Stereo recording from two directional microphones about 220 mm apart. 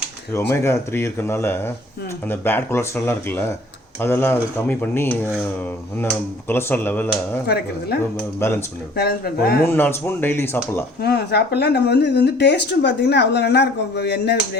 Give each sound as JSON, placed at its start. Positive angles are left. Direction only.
{"t": 0.3, "sound": "speech", "side_deg": 10}
{"t": 6.5, "sound": "speech", "side_deg": 10}
{"t": 7.4, "sound": "speech", "side_deg": 45}
{"t": 8.4, "sound": "speech", "side_deg": 10}
{"t": 9.0, "sound": "speech", "side_deg": 45}
{"t": 9.6, "sound": "speech", "side_deg": 10}
{"t": 11.0, "sound": "speech", "side_deg": 45}